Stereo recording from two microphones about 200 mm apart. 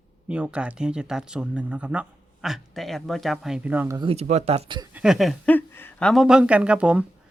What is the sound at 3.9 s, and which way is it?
Speech, 30° right (ahead or behind).